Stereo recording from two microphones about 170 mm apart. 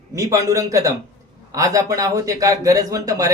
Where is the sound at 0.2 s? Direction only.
20° right (ahead or behind).